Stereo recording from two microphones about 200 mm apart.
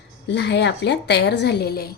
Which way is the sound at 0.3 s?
60° left (ahead or behind).